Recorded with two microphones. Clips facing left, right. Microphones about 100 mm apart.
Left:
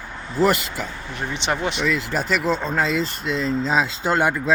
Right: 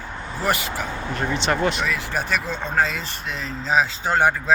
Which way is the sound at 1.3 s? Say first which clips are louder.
Right 2 dB; 20° left (ahead or behind).